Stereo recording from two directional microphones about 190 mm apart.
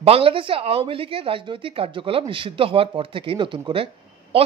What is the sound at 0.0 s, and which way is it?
Speech, 30° right (ahead or behind).